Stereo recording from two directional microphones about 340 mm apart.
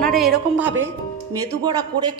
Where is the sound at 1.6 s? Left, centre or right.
Centre.